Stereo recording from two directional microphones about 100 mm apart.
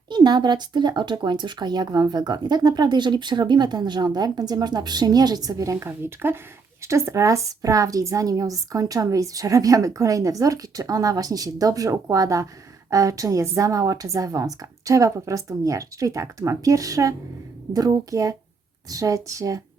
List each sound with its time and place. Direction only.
0.1 s a woman's voice: 45° right (ahead or behind)